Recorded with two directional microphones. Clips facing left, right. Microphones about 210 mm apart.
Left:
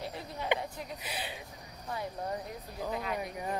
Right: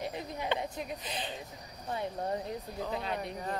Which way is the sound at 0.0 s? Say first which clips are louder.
Right 2 dB; 20° right (ahead or behind).